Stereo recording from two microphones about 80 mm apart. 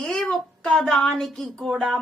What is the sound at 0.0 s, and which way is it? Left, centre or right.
A woman's voice, centre.